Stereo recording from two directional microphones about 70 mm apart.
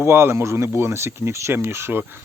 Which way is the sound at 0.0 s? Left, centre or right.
Right.